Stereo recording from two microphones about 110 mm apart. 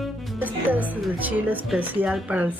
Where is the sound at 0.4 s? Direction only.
15° right (ahead or behind).